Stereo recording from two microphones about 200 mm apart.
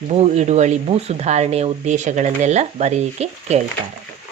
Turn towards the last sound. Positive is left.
turn(degrees=-35)  # may be behind; listen again after turning